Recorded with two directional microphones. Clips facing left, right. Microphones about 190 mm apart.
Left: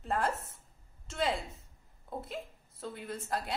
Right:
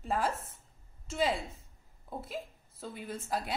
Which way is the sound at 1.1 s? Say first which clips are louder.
Right 2 dB; 5° right (ahead or behind).